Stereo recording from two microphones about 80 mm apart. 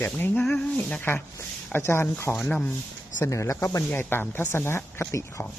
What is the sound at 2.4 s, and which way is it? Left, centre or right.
Speech, centre.